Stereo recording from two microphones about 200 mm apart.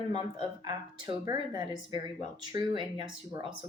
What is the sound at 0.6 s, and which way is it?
Speech, 20° right (ahead or behind).